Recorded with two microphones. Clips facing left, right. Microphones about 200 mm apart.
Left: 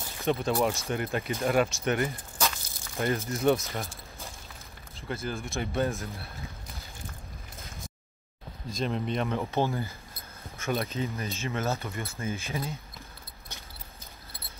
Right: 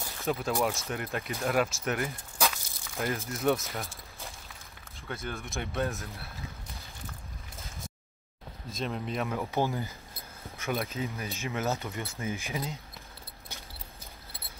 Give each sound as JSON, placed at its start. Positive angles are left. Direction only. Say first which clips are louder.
{"t": 0.2, "sound": "speech", "louder": "left 3 dB", "side_deg": 0}
{"t": 8.7, "sound": "speech", "louder": "left 3 dB", "side_deg": 0}
{"t": 9.7, "sound": "speech", "louder": "left 2 dB", "side_deg": -15}
{"t": 10.6, "sound": "a sound", "louder": "left 2 dB", "side_deg": -15}
{"t": 11.0, "sound": "speech", "louder": "left 2 dB", "side_deg": -10}